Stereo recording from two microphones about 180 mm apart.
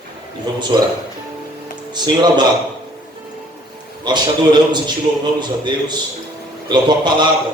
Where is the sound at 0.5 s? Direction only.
25° right (ahead or behind).